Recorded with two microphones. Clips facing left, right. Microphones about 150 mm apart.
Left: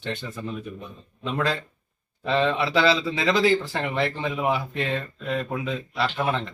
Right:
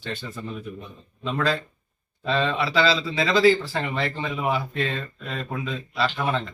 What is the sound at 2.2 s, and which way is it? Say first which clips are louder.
Speech: left 1 dB; 15° left (ahead or behind).